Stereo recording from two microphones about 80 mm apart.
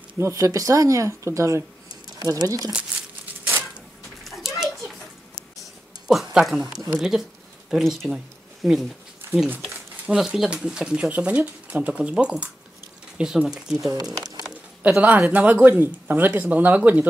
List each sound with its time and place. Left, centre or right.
0.2 s speech: right
4.2 s a sound: centre
7.0 s speech: centre
14.8 s speech: right